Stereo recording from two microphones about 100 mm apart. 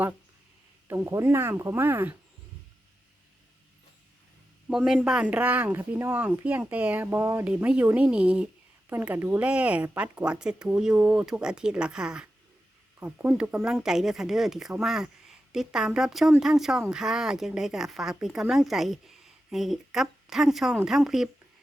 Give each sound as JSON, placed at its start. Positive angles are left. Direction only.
{"t": 0.9, "sound": "speech", "side_deg": -30}
{"t": 4.7, "sound": "speech", "side_deg": -5}
{"t": 7.4, "sound": "speech", "side_deg": -10}
{"t": 8.9, "sound": "a woman's voice", "side_deg": -20}